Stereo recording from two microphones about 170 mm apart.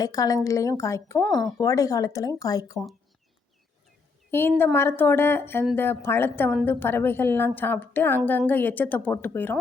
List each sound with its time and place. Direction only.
0.0 s speech: 20° left (ahead or behind)
1.2 s speech: 5° left (ahead or behind)
1.5 s speech: 20° left (ahead or behind)
4.3 s a woman's voice: 15° left (ahead or behind)